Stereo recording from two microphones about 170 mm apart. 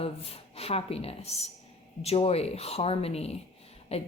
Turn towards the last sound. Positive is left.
turn(degrees=35)  # may be behind; listen again after turning